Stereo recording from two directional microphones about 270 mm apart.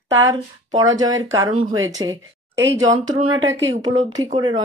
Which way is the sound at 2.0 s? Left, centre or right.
Right.